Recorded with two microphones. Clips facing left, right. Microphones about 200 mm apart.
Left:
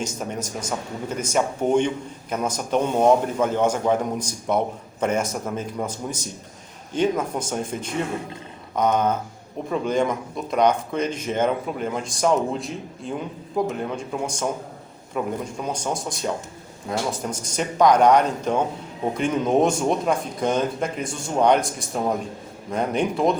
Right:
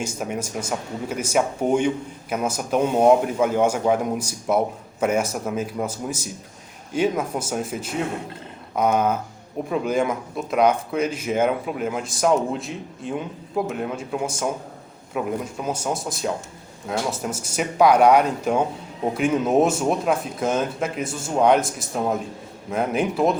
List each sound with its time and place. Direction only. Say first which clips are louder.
0.0 s a man's voice: right 1 dB; 10° right (ahead or behind)